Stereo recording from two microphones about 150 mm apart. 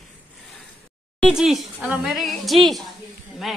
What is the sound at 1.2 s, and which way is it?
A woman's voice, centre (ahead or behind).